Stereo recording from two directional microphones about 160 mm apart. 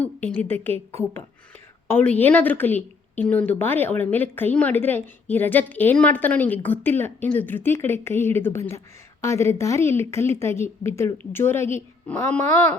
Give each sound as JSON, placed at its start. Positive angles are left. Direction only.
{"t": 0.0, "sound": "a woman's voice", "side_deg": 10}